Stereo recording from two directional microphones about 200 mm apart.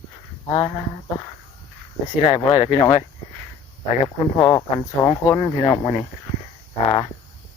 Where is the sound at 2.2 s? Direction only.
30° left (ahead or behind).